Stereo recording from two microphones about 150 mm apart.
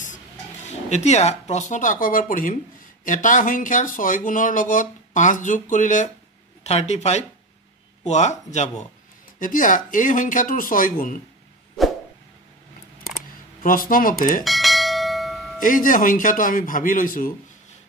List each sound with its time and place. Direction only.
0.7 s speech: 50° left (ahead or behind)
9.4 s speech: 60° left (ahead or behind)
13.6 s speech: 65° left (ahead or behind)
14.4 s bell: centre (ahead or behind)
15.6 s speech: 65° left (ahead or behind)